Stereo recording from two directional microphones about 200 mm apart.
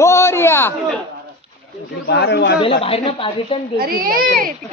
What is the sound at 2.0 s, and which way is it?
Speech, 55° left (ahead or behind).